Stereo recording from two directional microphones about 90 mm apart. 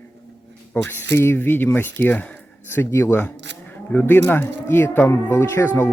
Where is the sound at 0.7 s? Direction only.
25° left (ahead or behind).